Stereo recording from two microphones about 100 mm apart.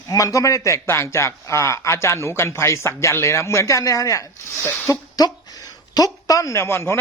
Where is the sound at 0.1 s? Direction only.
35° left (ahead or behind).